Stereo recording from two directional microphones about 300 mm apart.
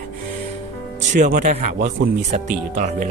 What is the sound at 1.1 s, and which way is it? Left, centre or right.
Speech, right.